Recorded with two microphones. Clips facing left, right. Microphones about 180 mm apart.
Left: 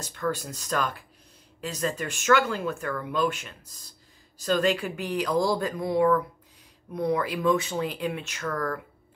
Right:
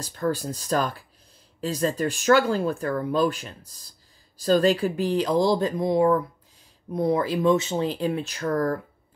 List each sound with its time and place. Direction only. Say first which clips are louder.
0.0 s speech: right 4 dB; 35° right (ahead or behind)